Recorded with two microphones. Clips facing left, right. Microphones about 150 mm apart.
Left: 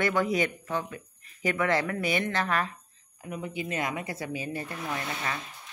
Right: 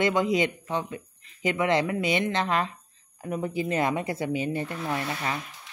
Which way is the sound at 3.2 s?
40° right (ahead or behind).